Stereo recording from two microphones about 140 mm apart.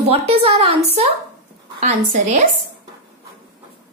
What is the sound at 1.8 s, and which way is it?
Speech, 60° right (ahead or behind).